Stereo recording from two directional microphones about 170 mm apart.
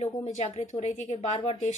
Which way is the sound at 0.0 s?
40° left (ahead or behind).